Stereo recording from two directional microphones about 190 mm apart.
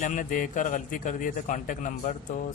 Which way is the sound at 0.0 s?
40° left (ahead or behind).